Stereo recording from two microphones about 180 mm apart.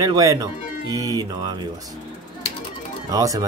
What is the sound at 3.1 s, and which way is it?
Speech, 20° right (ahead or behind).